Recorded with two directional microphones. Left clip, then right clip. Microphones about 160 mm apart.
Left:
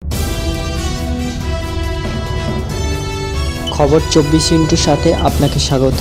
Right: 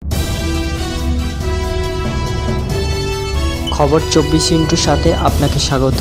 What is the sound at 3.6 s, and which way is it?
Speech, centre (ahead or behind).